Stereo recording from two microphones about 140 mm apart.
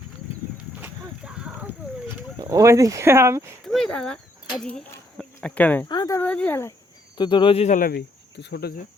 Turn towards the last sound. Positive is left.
turn(degrees=75)  # may be behind; listen again after turning